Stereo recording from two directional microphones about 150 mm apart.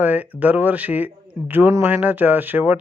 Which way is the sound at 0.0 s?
10° right (ahead or behind).